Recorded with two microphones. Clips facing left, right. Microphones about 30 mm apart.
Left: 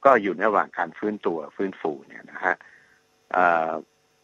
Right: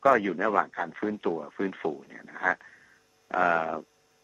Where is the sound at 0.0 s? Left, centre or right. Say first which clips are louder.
Left 5 dB; centre.